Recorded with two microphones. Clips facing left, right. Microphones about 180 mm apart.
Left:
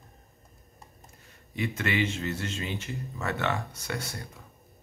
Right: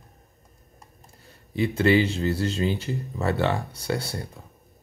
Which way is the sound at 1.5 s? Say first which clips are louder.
Right 10 dB; 30° right (ahead or behind).